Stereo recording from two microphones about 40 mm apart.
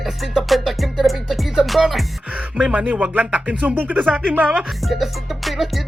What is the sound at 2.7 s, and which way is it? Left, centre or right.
Speech, right.